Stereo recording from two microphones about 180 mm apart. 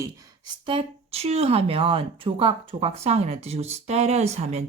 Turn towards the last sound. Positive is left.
turn(degrees=-35)  # may be behind; listen again after turning